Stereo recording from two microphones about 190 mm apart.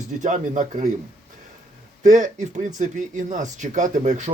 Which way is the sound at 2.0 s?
40° right (ahead or behind).